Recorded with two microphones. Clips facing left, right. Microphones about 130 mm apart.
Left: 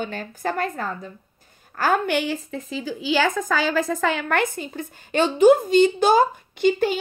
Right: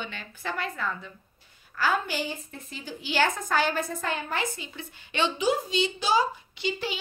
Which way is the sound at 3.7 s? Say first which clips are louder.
Left 8 dB; 90° left.